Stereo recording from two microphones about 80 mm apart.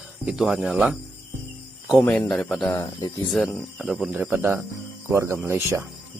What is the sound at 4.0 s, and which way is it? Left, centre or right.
Speech, centre.